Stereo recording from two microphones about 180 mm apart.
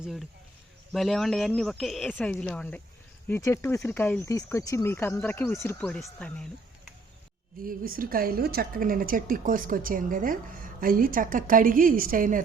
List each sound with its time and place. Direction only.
0.0 s speech: centre (ahead or behind)
7.6 s a woman's voice: 50° right (ahead or behind)